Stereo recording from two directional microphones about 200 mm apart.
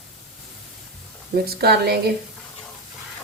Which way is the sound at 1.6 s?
50° right (ahead or behind).